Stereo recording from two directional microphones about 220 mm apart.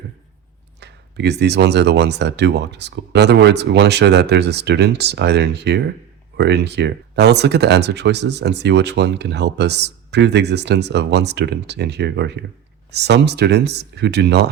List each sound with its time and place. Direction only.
0.8 s speech: 50° right (ahead or behind)